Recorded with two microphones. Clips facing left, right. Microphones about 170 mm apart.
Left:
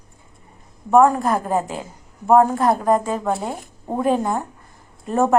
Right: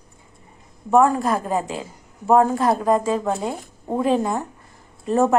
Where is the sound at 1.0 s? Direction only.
20° left (ahead or behind).